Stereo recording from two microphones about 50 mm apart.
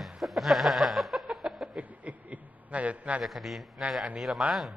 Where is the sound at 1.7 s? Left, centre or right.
Right.